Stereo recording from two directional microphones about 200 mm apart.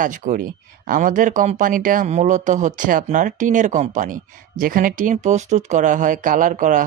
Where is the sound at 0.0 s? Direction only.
40° right (ahead or behind).